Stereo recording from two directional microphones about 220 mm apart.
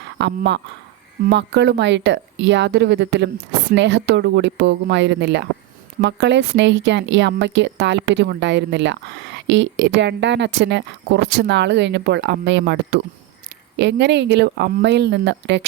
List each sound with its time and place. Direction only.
0.0 s speech: 50° right (ahead or behind)